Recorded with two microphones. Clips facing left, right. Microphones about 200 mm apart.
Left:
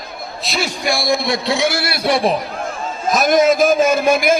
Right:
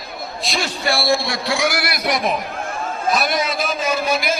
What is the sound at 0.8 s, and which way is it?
A man's voice, 15° left (ahead or behind).